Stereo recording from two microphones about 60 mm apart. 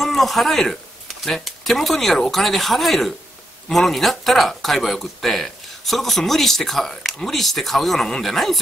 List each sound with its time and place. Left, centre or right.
0.0 s speech: centre